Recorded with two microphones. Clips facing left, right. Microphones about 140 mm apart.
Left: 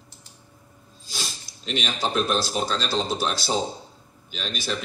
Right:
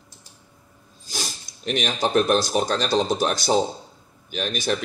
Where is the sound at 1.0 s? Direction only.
50° right (ahead or behind).